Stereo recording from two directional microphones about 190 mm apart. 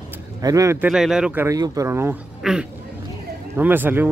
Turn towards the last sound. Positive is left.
turn(degrees=-10)  # may be behind; listen again after turning